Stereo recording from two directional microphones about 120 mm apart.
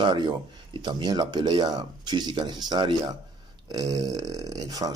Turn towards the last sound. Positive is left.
turn(degrees=-30)  # may be behind; listen again after turning